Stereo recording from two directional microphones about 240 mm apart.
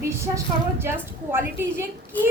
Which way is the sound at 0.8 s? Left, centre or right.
Centre.